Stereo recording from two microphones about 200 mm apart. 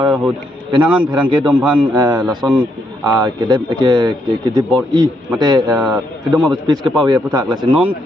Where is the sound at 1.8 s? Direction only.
20° right (ahead or behind).